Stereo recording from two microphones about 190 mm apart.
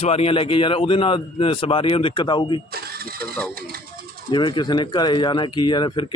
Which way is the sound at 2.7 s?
55° right (ahead or behind).